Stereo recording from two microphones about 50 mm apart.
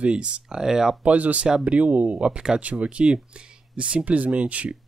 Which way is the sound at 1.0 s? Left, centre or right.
Right.